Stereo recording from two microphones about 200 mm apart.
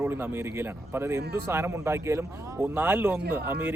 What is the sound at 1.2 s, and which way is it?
Speech, 55° right (ahead or behind).